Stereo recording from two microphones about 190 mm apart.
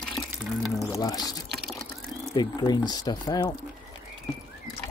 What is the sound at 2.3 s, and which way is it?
Speech, 20° left (ahead or behind).